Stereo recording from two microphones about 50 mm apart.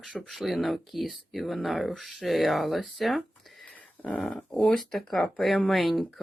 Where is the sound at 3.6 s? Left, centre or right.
Left.